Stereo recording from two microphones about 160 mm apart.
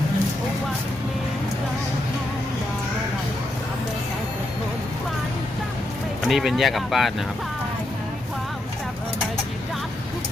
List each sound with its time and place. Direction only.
6.2 s speech: centre (ahead or behind)